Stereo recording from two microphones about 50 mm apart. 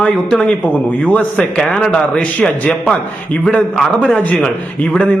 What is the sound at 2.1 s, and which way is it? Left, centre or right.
Speech, left.